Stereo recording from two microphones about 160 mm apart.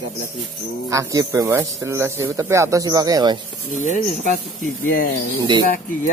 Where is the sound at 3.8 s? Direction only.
50° left (ahead or behind).